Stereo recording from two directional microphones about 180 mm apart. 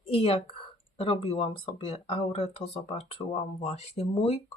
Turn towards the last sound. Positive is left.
turn(degrees=35)  # may be behind; listen again after turning